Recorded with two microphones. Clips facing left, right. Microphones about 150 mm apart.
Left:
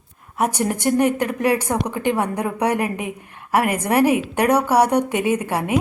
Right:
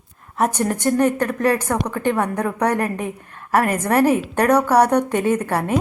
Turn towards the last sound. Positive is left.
turn(degrees=10)  # may be behind; listen again after turning